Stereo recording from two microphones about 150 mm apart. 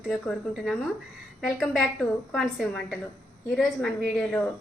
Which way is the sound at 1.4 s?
Centre (ahead or behind).